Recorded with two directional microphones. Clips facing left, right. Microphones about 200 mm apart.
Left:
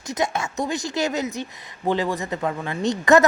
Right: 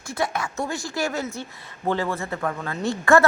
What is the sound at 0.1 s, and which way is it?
Speech, 20° left (ahead or behind).